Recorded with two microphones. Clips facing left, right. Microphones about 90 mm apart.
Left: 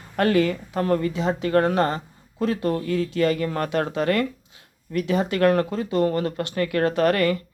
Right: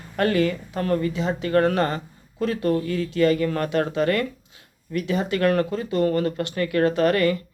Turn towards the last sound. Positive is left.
turn(degrees=45)  # may be behind; listen again after turning